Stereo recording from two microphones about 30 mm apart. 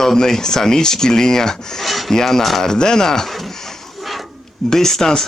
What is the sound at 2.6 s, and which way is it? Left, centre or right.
Speech, left.